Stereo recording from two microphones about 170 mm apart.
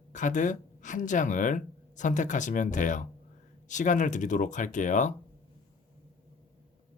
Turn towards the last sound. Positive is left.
turn(degrees=45)  # may be behind; listen again after turning